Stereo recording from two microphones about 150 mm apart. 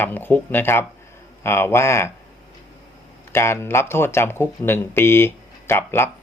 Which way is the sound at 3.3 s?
15° left (ahead or behind).